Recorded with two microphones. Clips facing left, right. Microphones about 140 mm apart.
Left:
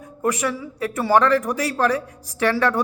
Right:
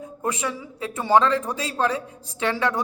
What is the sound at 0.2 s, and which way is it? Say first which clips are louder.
Speech: left 5 dB; 20° right (ahead or behind).